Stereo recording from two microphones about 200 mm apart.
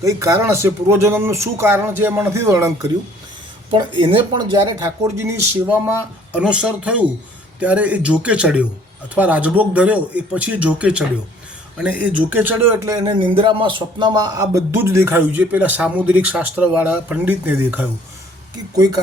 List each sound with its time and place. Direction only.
0.0 s a man's voice: 15° right (ahead or behind)
3.7 s speech: 25° right (ahead or behind)
4.8 s a man's voice: 15° right (ahead or behind)